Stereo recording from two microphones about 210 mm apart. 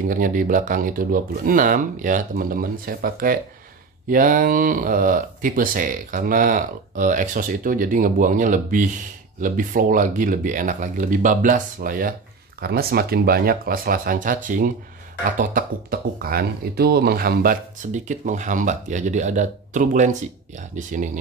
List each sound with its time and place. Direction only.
0.1 s speech: 40° right (ahead or behind)